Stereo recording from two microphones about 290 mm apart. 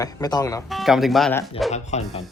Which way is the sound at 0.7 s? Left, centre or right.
Centre.